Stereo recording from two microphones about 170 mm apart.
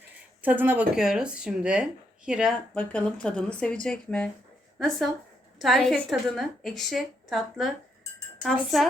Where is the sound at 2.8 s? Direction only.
5° left (ahead or behind).